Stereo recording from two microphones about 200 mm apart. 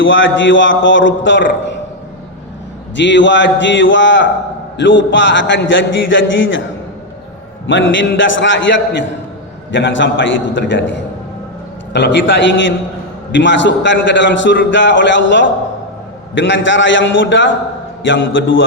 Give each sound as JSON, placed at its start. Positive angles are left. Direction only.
{"t": 0.0, "sound": "a man's voice", "side_deg": 70}
{"t": 2.9, "sound": "a man's voice", "side_deg": 65}
{"t": 7.7, "sound": "a man's voice", "side_deg": 70}